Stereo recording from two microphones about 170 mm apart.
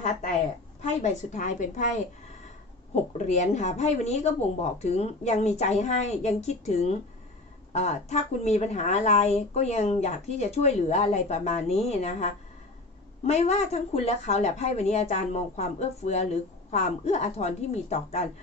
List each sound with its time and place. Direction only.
1.0 s a woman's voice: 45° left (ahead or behind)